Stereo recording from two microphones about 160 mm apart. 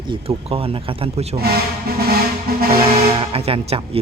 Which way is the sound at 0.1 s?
35° right (ahead or behind).